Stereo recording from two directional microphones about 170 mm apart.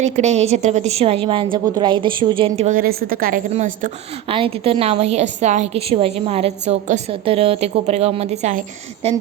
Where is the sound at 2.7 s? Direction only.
60° right (ahead or behind).